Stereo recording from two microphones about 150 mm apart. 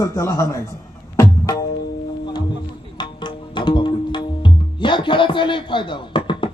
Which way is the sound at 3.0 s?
30° left (ahead or behind).